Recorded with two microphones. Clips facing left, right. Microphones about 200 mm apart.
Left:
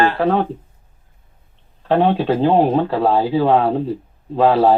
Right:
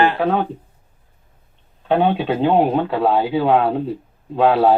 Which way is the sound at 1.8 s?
Centre (ahead or behind).